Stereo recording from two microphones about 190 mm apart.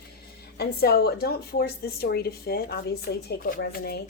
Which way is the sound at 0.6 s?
55° left (ahead or behind).